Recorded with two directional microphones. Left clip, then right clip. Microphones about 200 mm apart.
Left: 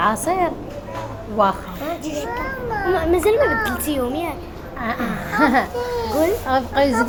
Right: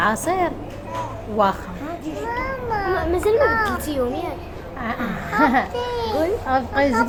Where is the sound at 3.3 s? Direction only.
20° right (ahead or behind).